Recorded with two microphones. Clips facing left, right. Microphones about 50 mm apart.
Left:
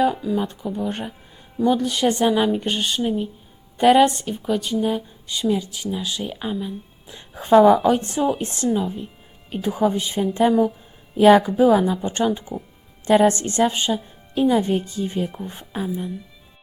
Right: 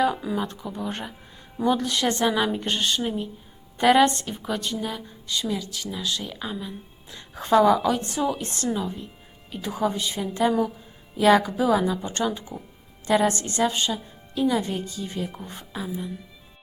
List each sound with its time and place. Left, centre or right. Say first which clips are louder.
0.3 s speech: left 5 dB; centre
4.9 s speech: left 7 dB; centre
7.5 s speech: left 5 dB; left
8.7 s a woman's voice: left 5 dB; centre; by 15.3 s left